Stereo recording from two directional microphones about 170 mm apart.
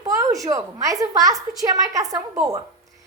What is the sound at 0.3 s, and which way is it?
A woman's voice, 20° right (ahead or behind).